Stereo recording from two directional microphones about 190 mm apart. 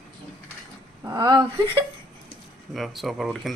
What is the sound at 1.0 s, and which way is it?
Speech, 20° right (ahead or behind).